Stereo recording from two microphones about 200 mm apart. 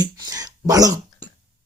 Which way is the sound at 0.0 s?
20° right (ahead or behind).